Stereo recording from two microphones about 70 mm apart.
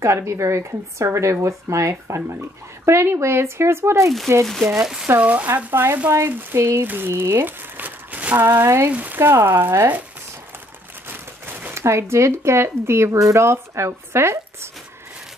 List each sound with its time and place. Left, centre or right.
0.0 s speech: right
4.7 s speech: centre
5.2 s speech: centre
5.7 s speech: right
6.8 s speech: right
7.7 s a sound: right
8.5 s speech: right
8.9 s speech: right
11.1 s speech: right